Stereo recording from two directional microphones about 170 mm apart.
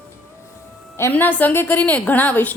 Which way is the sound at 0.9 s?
15° left (ahead or behind).